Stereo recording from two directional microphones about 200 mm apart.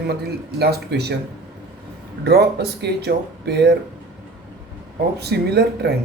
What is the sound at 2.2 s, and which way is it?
A man's voice, 55° right (ahead or behind).